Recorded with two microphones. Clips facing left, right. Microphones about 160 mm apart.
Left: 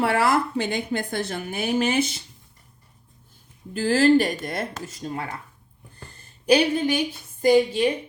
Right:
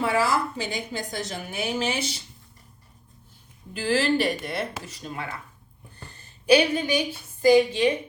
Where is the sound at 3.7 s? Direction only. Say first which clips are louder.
Left 6 dB; 45° left (ahead or behind).